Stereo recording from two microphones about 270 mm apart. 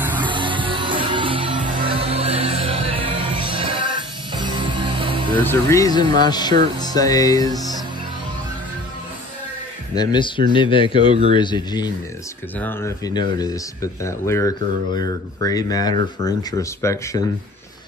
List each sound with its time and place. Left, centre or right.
0.2 s music: centre
5.4 s speech: centre
9.9 s speech: centre